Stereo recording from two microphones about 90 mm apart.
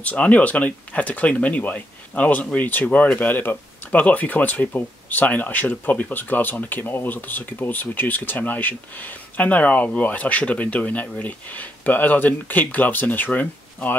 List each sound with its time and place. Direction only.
0.0 s speech: 15° left (ahead or behind)